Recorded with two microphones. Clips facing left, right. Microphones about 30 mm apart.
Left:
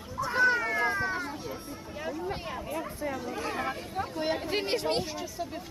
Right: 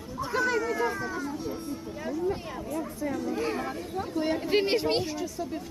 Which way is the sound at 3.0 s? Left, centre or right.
Centre.